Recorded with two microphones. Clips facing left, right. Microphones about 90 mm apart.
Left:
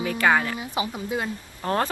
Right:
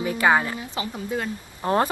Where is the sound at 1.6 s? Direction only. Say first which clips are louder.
Right 3 dB; 20° right (ahead or behind).